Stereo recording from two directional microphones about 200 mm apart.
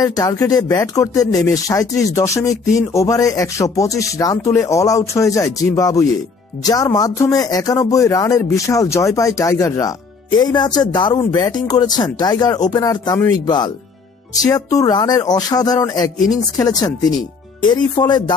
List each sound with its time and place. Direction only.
0.0 s a man's voice: 20° left (ahead or behind)